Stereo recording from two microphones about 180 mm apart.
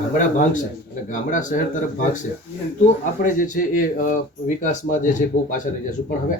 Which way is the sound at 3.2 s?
45° left (ahead or behind).